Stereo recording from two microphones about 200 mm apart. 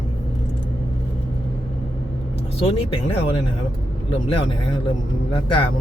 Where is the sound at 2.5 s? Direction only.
30° left (ahead or behind).